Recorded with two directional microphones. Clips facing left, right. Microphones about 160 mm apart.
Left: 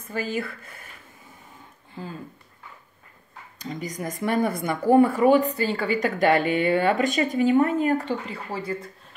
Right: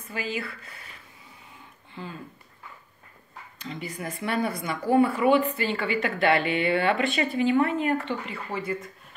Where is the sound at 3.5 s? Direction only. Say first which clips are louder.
Left 3 dB; 40° left (ahead or behind).